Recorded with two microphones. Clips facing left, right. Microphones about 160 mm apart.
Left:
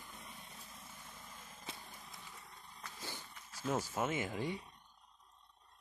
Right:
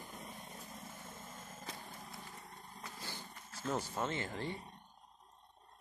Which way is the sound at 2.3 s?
45° right (ahead or behind).